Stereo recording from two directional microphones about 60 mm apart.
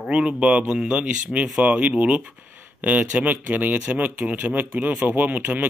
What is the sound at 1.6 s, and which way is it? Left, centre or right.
Speech, right.